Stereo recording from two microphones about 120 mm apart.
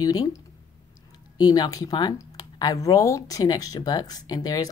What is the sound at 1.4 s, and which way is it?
Speech, 35° left (ahead or behind).